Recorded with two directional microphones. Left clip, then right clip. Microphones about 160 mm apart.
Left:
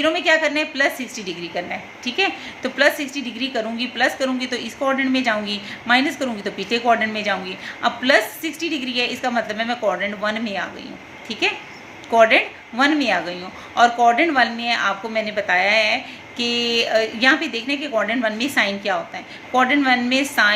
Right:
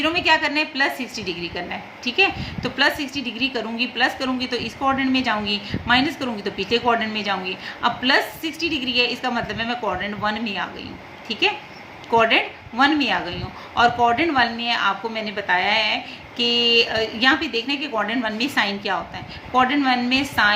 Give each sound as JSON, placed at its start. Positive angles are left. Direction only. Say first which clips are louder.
{"t": 0.0, "sound": "a woman's voice", "louder": "left 1 dB", "side_deg": 15}